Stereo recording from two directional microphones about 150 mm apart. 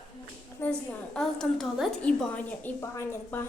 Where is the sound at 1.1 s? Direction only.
5° left (ahead or behind).